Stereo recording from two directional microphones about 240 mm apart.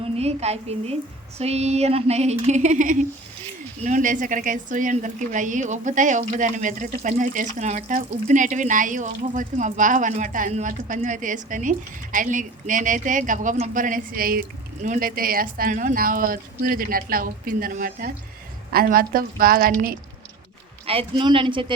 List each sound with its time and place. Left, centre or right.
0.0 s a woman's voice: right
20.8 s speech: right